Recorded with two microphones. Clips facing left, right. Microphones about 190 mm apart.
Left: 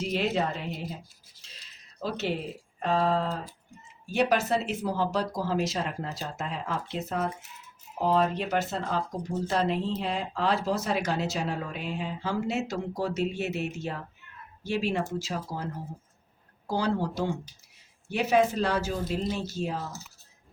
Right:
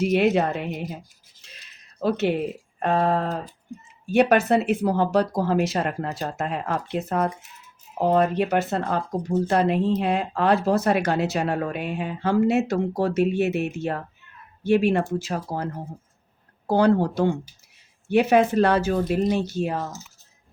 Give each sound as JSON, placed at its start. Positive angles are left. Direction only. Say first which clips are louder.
{"t": 0.0, "sound": "speech", "louder": "right 8 dB", "side_deg": -60}
{"t": 1.4, "sound": "a sound", "louder": "right 3 dB", "side_deg": -60}
{"t": 2.8, "sound": "speech", "louder": "right 4 dB", "side_deg": -55}